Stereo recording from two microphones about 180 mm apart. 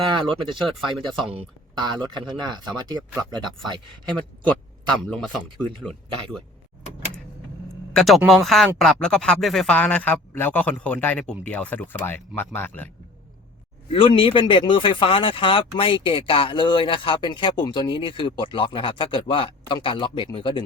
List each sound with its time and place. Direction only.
0.0 s speech: 25° right (ahead or behind)
5.0 s speech: 5° left (ahead or behind)
7.9 s speech: centre (ahead or behind)
13.9 s speech: 30° left (ahead or behind)